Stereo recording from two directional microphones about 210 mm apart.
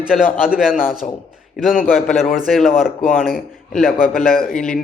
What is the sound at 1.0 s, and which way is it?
Speech, 35° left (ahead or behind).